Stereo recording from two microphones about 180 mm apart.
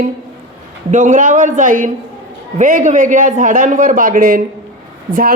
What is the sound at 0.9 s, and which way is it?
A woman's voice, 45° right (ahead or behind).